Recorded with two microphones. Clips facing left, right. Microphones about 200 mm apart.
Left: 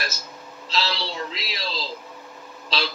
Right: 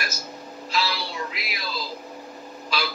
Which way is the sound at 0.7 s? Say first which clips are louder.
Left 1 dB; 25° left (ahead or behind).